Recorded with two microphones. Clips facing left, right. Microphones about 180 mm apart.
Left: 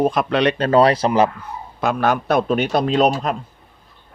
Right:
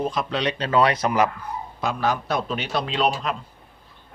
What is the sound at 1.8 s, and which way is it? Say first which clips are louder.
A man's voice: left 6 dB; 60° left (ahead or behind).